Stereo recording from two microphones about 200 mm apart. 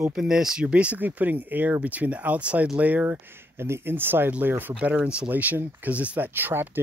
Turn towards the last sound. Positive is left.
turn(degrees=-10)  # may be behind; listen again after turning